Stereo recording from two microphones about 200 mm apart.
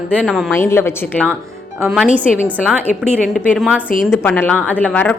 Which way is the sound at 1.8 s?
5° right (ahead or behind).